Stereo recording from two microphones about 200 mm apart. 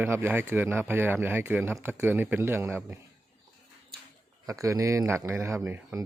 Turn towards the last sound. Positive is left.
turn(degrees=0)  # may be behind; listen again after turning